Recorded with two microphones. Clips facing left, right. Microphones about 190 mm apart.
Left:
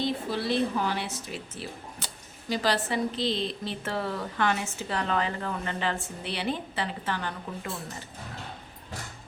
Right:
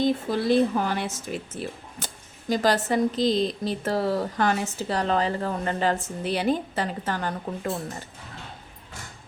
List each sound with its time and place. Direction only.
0.0 s a woman's voice: 45° right (ahead or behind)